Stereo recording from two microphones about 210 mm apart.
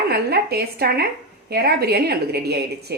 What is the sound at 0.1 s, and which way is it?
A woman's voice, 50° right (ahead or behind).